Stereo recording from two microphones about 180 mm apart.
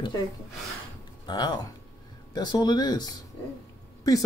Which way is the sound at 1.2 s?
25° left (ahead or behind).